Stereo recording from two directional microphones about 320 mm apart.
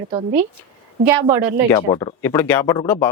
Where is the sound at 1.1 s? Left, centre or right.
Centre.